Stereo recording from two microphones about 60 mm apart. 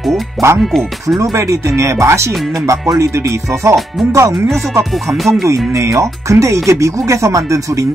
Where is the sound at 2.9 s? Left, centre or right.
Right.